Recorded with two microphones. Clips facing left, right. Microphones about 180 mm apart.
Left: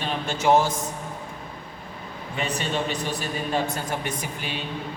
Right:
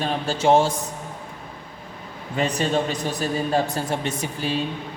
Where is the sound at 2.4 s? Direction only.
40° right (ahead or behind).